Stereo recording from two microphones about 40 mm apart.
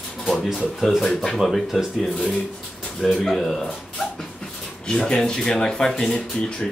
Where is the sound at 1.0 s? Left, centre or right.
Centre.